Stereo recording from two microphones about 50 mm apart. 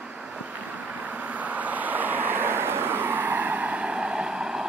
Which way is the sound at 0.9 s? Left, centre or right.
Right.